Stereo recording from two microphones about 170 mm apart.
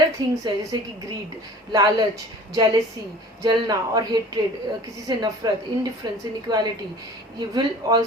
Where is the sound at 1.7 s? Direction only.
20° right (ahead or behind).